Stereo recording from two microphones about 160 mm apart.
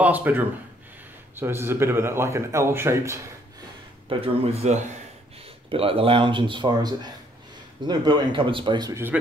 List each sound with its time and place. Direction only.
0.0 s a man's voice: 10° right (ahead or behind)
4.1 s speech: 40° right (ahead or behind)